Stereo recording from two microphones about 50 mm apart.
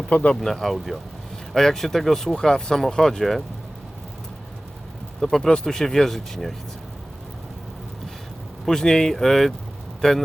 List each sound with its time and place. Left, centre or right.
0.1 s speech: left
0.3 s speech: centre
5.2 s speech: centre
8.6 s speech: centre